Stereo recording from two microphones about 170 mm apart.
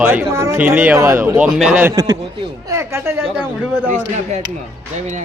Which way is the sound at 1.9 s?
20° right (ahead or behind).